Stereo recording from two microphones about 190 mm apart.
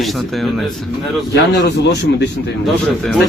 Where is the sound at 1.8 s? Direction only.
60° left (ahead or behind).